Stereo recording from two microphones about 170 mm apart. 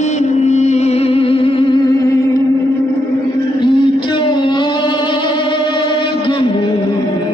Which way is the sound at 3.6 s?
30° left (ahead or behind).